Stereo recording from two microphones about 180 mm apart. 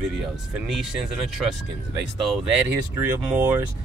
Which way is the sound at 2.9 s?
15° right (ahead or behind).